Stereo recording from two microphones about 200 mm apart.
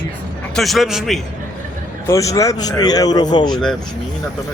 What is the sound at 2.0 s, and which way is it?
Speech, 15° left (ahead or behind).